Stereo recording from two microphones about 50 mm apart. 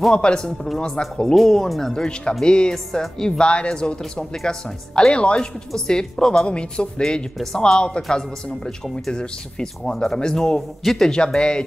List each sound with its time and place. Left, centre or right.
0.1 s speech: centre
1.2 s speech: centre
2.0 s speech: centre
5.7 s speech: centre